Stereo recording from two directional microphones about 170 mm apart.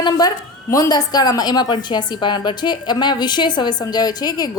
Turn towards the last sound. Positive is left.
turn(degrees=20)  # may be behind; listen again after turning